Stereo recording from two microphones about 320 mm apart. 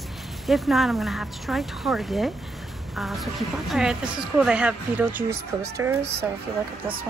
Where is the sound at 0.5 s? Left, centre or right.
Centre.